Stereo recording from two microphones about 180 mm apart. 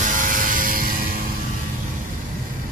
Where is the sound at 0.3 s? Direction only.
50° right (ahead or behind).